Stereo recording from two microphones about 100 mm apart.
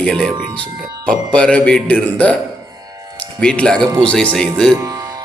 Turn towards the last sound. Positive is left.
turn(degrees=-40)  # may be behind; listen again after turning